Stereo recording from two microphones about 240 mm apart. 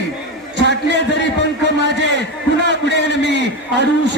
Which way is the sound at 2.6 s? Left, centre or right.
Left.